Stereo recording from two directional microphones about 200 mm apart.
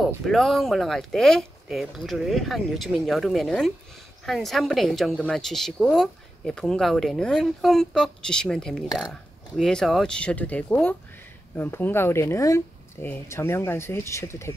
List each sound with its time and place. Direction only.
0.0 s a woman's voice: centre (ahead or behind)